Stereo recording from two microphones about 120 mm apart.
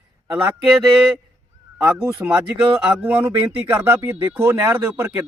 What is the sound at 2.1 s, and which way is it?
Speech, 10° right (ahead or behind).